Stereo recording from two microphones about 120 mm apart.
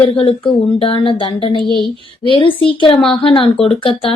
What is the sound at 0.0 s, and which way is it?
A woman's voice, 50° left (ahead or behind).